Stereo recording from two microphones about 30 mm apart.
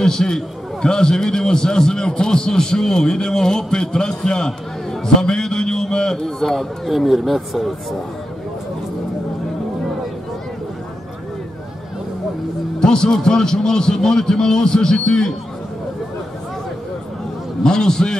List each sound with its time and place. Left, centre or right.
0.0 s a man's voice: left
5.0 s a sound: left
6.2 s a man's voice: centre
6.9 s speech: centre
12.8 s a man's voice: left
17.6 s a man's voice: left